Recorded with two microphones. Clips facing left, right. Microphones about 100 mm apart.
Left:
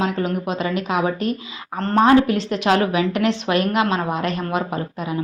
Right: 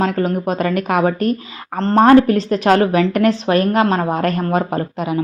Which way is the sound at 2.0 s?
45° right (ahead or behind).